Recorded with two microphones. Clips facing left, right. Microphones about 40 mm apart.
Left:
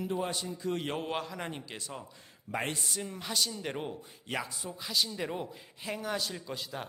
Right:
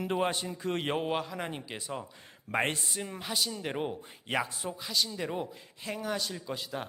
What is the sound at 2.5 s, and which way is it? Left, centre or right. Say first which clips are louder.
Speech: right 4 dB; right.